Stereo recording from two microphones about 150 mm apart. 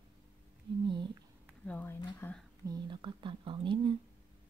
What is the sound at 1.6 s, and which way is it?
Speech, 10° left (ahead or behind).